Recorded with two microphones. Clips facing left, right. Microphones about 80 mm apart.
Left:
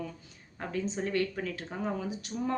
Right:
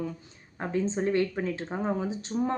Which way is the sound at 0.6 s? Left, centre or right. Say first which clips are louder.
Right 5 dB; right.